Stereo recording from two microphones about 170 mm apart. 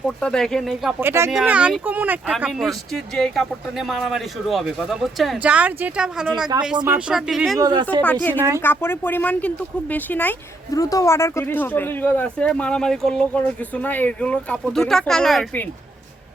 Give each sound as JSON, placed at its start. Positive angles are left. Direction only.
{"t": 0.0, "sound": "speech", "side_deg": 5}
{"t": 1.0, "sound": "speech", "side_deg": -15}
{"t": 1.3, "sound": "speech", "side_deg": -5}
{"t": 2.5, "sound": "speech", "side_deg": 0}
{"t": 7.6, "sound": "speech", "side_deg": -25}
{"t": 8.0, "sound": "speech", "side_deg": 10}